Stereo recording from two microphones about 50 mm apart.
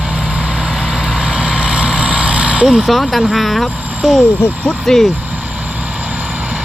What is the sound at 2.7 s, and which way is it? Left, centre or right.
Speech, centre.